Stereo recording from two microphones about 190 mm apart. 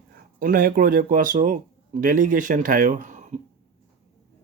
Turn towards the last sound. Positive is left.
turn(degrees=-40)  # may be behind; listen again after turning